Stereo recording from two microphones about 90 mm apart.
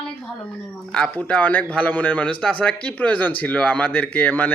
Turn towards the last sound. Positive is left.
turn(degrees=20)  # may be behind; listen again after turning